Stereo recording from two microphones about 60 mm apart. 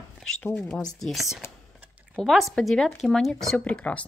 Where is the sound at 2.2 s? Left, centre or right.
Centre.